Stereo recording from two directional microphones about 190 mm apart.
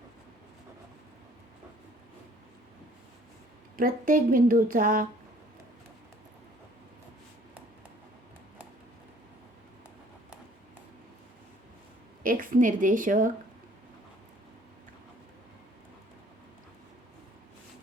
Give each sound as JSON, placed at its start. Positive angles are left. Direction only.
{"t": 3.8, "sound": "a woman's voice", "side_deg": -45}
{"t": 12.2, "sound": "a woman's voice", "side_deg": -45}